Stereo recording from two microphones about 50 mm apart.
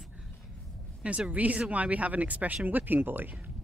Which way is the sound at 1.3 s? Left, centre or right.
Right.